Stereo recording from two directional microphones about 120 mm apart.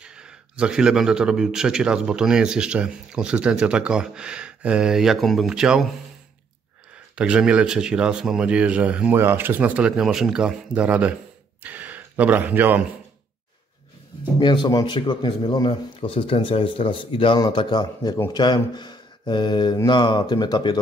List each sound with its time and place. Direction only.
0.0 s a man's voice: 5° right (ahead or behind)
7.2 s a man's voice: 10° right (ahead or behind)
14.4 s speech: 40° left (ahead or behind)